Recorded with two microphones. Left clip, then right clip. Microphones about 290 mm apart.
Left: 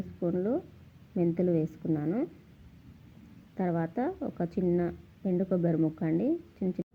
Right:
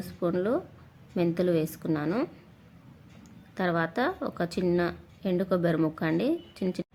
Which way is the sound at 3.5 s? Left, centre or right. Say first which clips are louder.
Right 4 dB; centre.